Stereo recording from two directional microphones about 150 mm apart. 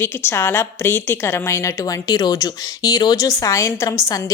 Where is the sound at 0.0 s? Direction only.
15° left (ahead or behind).